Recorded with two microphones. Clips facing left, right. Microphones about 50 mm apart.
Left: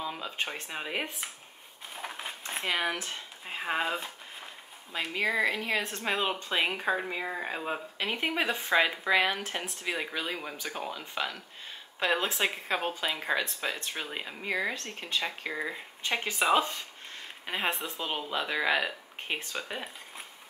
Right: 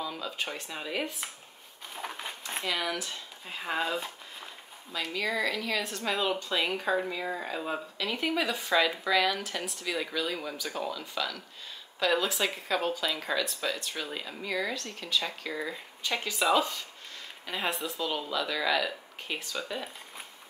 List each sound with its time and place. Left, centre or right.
0.0 s speech: left
2.0 s a sound: centre
2.6 s speech: left